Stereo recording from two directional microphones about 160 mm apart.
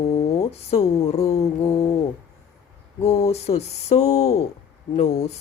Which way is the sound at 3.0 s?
40° left (ahead or behind).